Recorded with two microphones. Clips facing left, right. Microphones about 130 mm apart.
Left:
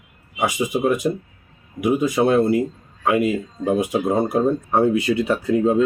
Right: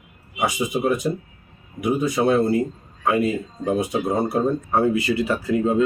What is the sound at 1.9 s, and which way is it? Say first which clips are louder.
Speech: left 2 dB; 20° left (ahead or behind).